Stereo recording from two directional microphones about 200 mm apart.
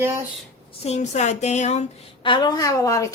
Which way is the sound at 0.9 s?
35° left (ahead or behind).